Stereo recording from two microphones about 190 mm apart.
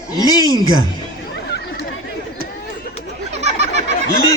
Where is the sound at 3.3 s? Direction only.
35° right (ahead or behind).